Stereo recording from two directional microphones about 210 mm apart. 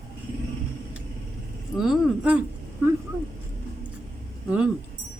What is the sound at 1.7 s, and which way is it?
Speech, centre (ahead or behind).